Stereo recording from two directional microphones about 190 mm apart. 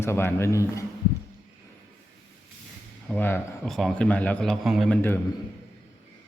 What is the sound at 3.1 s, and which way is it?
A man's voice, 10° left (ahead or behind).